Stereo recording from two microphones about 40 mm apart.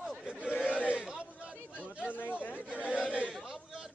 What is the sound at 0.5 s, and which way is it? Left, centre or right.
Chatter, left.